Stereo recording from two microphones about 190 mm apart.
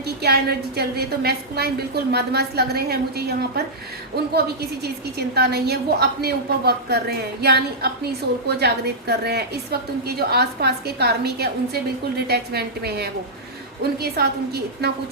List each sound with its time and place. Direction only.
0.2 s a woman's voice: 55° right (ahead or behind)